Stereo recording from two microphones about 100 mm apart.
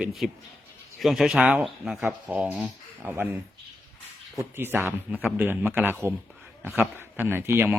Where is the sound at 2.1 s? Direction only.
15° right (ahead or behind).